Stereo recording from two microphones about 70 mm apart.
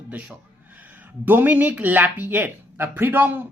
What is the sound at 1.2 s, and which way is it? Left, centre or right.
Speech, right.